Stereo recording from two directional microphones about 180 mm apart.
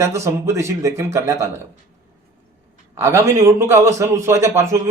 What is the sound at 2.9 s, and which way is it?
A man's voice, 15° right (ahead or behind).